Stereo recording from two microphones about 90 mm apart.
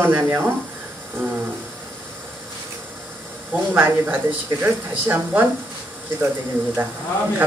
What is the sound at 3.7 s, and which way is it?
Speech, 20° right (ahead or behind).